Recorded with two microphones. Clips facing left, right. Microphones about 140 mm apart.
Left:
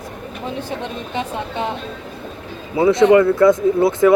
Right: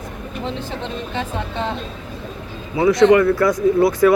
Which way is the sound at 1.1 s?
15° left (ahead or behind).